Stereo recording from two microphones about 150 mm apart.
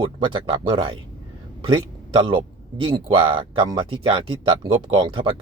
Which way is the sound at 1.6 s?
30° right (ahead or behind).